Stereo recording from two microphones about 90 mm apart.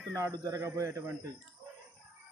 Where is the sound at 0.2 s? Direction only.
35° right (ahead or behind).